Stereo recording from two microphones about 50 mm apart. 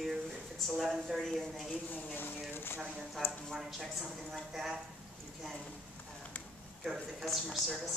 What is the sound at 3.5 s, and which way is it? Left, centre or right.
Speech, centre.